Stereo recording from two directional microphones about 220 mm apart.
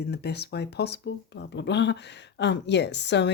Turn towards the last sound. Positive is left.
turn(degrees=50)  # may be behind; listen again after turning